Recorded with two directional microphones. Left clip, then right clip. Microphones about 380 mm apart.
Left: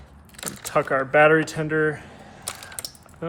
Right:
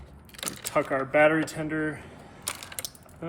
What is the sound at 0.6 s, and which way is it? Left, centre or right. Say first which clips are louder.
Speech: left 5 dB; left.